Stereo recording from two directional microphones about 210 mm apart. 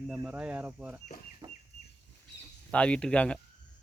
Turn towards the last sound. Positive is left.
turn(degrees=5)  # may be behind; listen again after turning